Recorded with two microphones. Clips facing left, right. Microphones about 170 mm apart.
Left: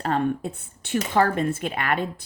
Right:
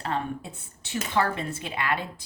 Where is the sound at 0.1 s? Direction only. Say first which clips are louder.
Left 9 dB; 50° left (ahead or behind).